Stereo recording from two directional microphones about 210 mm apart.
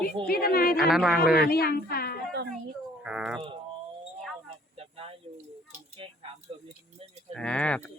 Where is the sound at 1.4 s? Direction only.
45° left (ahead or behind).